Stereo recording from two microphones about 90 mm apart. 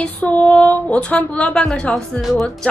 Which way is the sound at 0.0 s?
15° left (ahead or behind).